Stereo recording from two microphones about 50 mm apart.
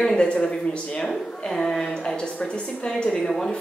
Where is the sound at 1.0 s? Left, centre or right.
Centre.